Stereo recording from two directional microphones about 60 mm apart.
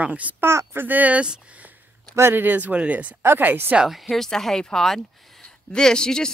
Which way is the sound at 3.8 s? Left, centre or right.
Centre.